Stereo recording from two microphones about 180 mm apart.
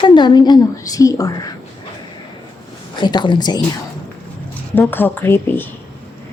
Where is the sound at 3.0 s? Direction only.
25° left (ahead or behind).